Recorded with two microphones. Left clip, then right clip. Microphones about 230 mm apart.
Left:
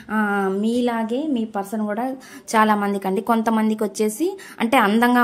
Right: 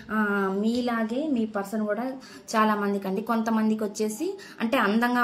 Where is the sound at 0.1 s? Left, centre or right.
Left.